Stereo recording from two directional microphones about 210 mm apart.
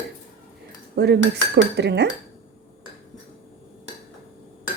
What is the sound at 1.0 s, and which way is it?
Cutlery, 50° right (ahead or behind).